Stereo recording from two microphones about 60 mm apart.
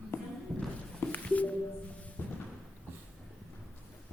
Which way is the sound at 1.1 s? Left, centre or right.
Left.